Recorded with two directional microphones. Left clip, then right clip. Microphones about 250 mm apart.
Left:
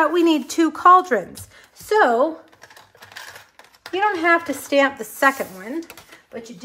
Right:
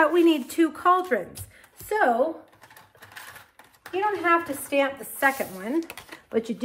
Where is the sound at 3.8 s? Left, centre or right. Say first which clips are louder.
Left 5 dB; left.